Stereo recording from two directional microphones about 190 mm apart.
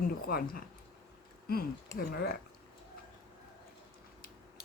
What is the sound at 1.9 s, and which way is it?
Speech, 55° left (ahead or behind).